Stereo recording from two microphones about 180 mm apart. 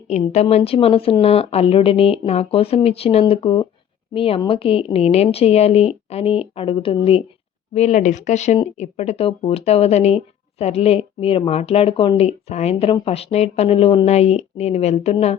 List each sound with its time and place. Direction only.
0.3 s speech: 35° left (ahead or behind)